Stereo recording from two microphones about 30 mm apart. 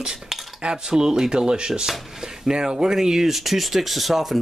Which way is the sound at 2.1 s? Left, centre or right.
Centre.